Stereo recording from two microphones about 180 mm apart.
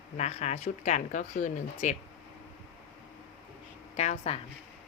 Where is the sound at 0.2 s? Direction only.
40° left (ahead or behind).